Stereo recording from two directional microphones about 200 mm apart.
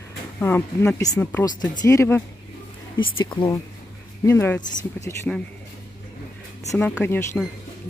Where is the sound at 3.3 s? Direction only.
20° left (ahead or behind).